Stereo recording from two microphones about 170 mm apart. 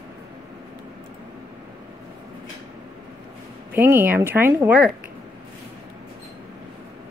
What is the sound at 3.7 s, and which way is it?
Speech, 10° right (ahead or behind).